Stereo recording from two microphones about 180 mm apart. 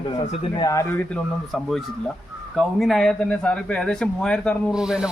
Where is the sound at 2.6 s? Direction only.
Centre (ahead or behind).